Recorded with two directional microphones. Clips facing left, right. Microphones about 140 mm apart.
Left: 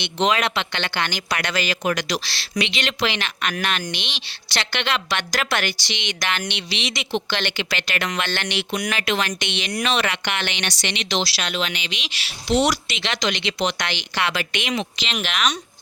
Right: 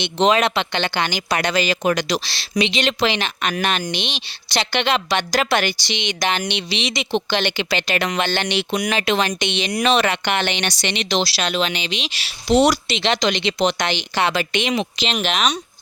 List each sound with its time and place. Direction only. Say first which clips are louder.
0.0 s speech: right 4 dB; 30° right (ahead or behind)